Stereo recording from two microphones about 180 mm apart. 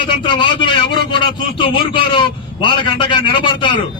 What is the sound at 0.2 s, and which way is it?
A man's voice, 25° left (ahead or behind).